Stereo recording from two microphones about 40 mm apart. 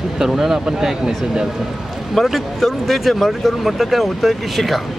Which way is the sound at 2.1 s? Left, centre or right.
Centre.